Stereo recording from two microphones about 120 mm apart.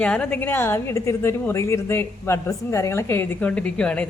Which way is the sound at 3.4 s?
10° left (ahead or behind).